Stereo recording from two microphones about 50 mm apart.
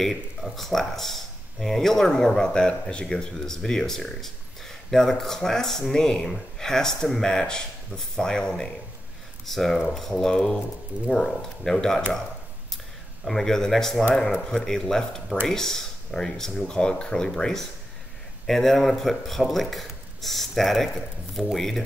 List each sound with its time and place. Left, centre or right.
0.0 s speech: centre
9.5 s speech: centre
13.2 s speech: centre